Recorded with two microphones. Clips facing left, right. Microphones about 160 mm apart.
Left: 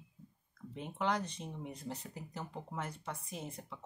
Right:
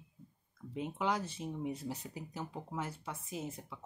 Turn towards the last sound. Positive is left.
turn(degrees=-5)  # may be behind; listen again after turning